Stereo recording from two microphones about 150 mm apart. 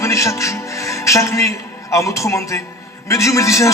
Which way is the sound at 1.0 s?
20° left (ahead or behind).